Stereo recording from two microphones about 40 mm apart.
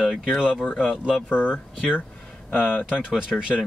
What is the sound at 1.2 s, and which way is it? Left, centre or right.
Speech, left.